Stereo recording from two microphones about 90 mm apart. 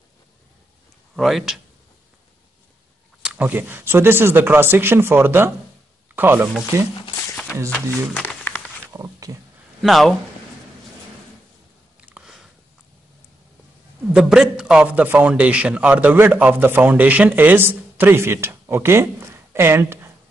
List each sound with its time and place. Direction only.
1.1 s speech: 5° right (ahead or behind)
3.2 s a sound: 10° right (ahead or behind)
3.4 s a man's voice: 25° right (ahead or behind)
8.9 s speech: 40° right (ahead or behind)
9.8 s speech: centre (ahead or behind)
12.1 s a sound: 5° right (ahead or behind)
14.1 s a man's voice: 10° right (ahead or behind); by 20.1 s 30° right (ahead or behind)